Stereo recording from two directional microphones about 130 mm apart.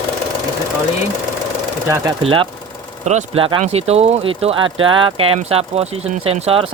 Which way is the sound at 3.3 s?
45° right (ahead or behind).